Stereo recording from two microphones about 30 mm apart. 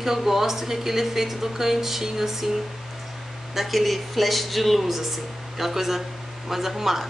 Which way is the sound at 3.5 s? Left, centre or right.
Centre.